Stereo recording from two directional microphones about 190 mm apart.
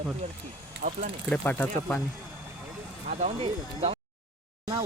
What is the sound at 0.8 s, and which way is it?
Speech, 45° right (ahead or behind).